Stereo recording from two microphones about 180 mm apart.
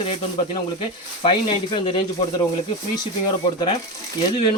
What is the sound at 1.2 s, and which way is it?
Speech, 30° left (ahead or behind).